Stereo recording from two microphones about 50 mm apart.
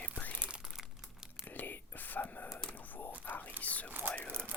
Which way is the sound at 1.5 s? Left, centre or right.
Left.